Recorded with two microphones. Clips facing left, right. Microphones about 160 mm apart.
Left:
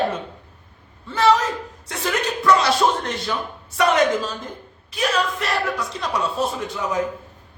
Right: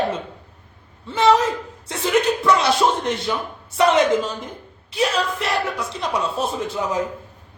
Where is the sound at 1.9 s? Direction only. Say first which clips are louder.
Right 5 dB; 25° right (ahead or behind).